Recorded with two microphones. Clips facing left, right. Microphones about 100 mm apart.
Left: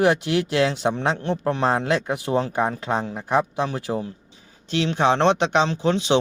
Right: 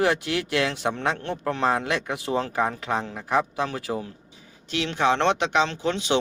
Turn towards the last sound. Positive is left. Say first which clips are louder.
# left 4 dB
turn(degrees=25)  # may be behind; listen again after turning